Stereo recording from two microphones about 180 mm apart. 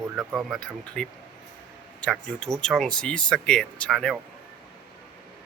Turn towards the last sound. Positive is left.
turn(degrees=5)  # may be behind; listen again after turning